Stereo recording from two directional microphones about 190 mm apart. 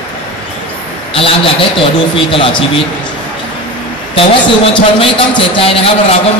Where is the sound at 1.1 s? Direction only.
30° left (ahead or behind).